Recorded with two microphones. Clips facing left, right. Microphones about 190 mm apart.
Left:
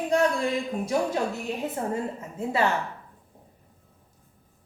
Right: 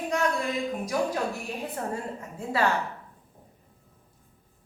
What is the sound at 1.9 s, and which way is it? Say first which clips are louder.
Speech: left 4 dB; 20° left (ahead or behind).